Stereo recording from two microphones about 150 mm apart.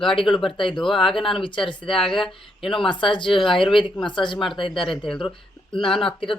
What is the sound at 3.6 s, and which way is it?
Speech, 35° left (ahead or behind).